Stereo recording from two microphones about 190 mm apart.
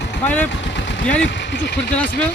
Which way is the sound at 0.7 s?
70° left (ahead or behind).